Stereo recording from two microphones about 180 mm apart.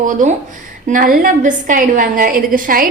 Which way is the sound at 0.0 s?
45° right (ahead or behind).